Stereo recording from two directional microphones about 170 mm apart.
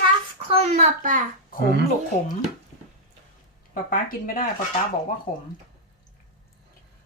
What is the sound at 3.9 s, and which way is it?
Speech, 55° left (ahead or behind).